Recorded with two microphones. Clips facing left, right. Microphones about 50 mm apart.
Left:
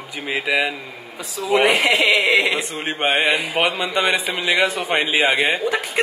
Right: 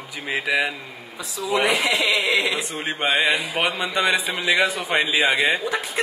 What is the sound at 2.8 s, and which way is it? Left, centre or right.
A man's voice, left.